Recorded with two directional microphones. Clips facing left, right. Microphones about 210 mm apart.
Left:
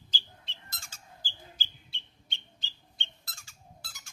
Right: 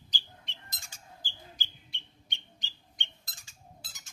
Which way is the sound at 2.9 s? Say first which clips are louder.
Left 2 dB; 15° right (ahead or behind).